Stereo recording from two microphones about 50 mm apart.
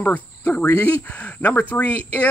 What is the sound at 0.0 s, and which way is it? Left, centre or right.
Speech, left.